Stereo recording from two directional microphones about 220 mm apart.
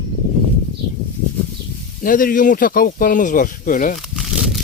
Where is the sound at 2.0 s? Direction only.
40° left (ahead or behind).